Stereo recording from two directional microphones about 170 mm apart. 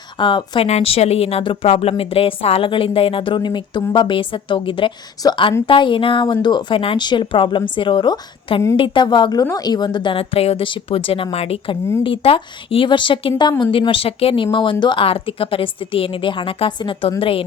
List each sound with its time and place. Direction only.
0.2 s a woman's voice: 30° left (ahead or behind)